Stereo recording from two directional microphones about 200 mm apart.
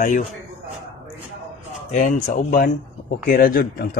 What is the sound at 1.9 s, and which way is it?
Speech, 40° left (ahead or behind).